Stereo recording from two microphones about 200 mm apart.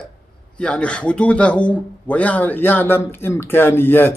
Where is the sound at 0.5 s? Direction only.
5° left (ahead or behind).